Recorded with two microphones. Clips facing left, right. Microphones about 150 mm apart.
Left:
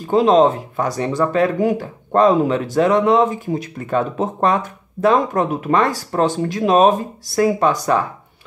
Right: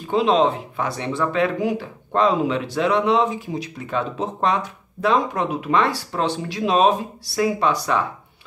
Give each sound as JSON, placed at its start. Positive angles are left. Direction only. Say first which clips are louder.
{"t": 0.1, "sound": "speech", "louder": "left 5 dB", "side_deg": 40}